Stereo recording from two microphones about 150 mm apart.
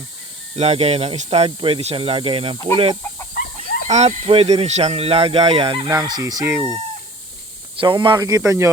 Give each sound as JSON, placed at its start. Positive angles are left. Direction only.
{"t": 0.5, "sound": "speech", "side_deg": -45}
{"t": 7.8, "sound": "speech", "side_deg": -35}